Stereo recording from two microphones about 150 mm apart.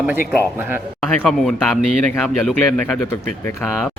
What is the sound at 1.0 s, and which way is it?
Speech, 5° left (ahead or behind).